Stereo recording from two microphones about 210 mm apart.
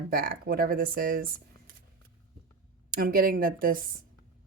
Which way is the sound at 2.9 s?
45° right (ahead or behind).